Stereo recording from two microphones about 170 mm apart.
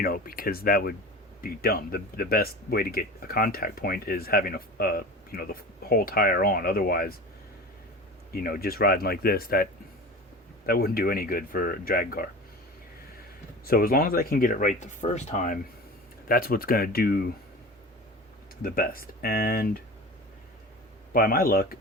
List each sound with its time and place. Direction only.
0.0 s speech: 60° left (ahead or behind)
8.3 s speech: 60° left (ahead or behind)
10.7 s speech: 60° left (ahead or behind)
13.7 s speech: 60° left (ahead or behind)
16.3 s speech: 60° left (ahead or behind)
18.6 s speech: 55° left (ahead or behind)
21.1 s speech: 60° left (ahead or behind)